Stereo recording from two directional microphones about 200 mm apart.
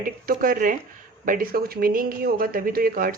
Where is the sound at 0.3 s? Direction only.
45° right (ahead or behind).